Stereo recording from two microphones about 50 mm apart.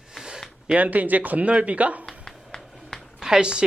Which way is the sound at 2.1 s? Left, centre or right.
Centre.